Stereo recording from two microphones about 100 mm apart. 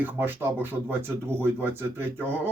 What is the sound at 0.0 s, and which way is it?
Speech, 20° right (ahead or behind).